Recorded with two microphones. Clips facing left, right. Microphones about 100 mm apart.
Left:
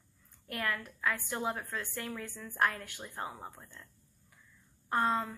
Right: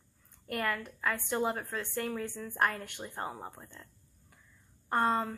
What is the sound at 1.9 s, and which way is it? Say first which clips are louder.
Speech: right 9 dB; 50° right (ahead or behind).